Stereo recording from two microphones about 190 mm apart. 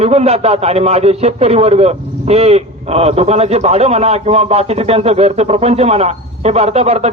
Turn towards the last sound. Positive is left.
turn(degrees=-35)  # may be behind; listen again after turning